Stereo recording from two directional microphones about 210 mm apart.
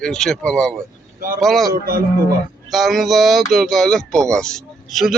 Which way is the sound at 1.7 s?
45° right (ahead or behind).